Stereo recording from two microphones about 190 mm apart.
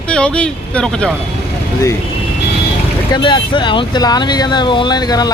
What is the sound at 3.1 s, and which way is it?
Speech, 25° left (ahead or behind).